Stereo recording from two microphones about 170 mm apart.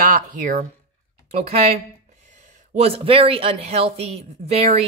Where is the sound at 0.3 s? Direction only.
50° right (ahead or behind).